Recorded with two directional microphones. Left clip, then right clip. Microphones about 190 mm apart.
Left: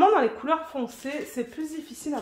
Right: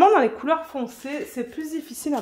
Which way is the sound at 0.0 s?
55° right (ahead or behind).